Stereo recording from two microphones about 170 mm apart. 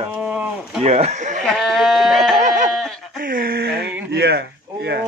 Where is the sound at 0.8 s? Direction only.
40° right (ahead or behind).